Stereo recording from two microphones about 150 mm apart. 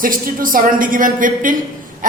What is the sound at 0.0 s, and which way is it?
A woman's voice, 65° right (ahead or behind).